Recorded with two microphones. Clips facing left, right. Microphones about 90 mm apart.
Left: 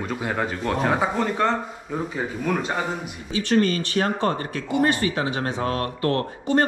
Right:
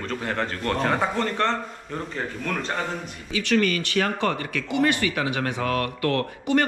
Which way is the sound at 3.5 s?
25° left (ahead or behind).